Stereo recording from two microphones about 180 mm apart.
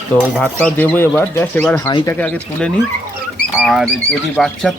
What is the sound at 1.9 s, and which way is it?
Speech, 25° left (ahead or behind).